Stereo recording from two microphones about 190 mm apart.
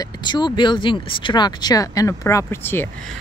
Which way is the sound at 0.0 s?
25° left (ahead or behind).